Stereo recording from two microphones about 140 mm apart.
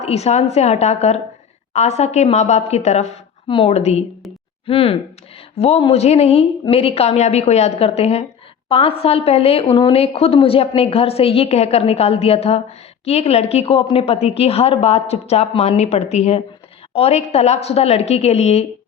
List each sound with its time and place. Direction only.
0.0 s a woman's voice: 50° left (ahead or behind)
3.5 s a woman's voice: 45° left (ahead or behind)